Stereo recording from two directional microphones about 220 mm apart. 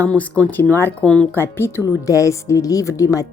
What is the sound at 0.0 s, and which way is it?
Speech, 5° left (ahead or behind).